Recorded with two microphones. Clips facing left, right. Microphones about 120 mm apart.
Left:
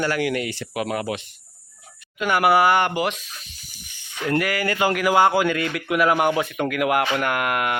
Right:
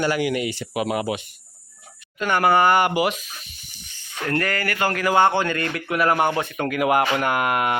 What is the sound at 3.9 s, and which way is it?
Speech, 15° left (ahead or behind).